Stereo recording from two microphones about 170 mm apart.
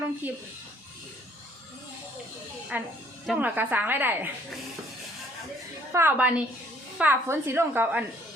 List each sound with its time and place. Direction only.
0.2 s a woman's voice: 10° right (ahead or behind)
2.7 s a woman's voice: 10° right (ahead or behind)
5.9 s a woman's voice: 10° right (ahead or behind)